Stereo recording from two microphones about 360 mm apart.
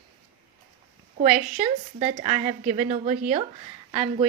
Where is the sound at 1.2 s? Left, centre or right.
Centre.